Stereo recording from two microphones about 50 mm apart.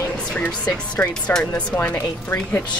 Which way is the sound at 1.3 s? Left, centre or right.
Left.